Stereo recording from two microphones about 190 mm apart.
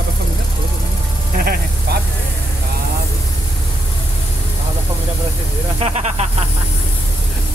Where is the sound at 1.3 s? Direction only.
50° right (ahead or behind).